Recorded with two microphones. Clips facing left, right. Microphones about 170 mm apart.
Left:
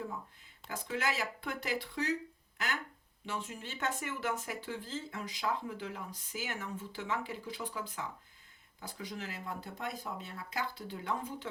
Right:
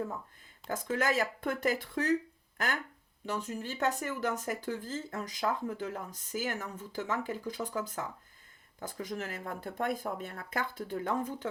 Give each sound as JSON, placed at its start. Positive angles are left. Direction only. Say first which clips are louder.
{"t": 0.7, "sound": "speech", "louder": "right 5 dB", "side_deg": -45}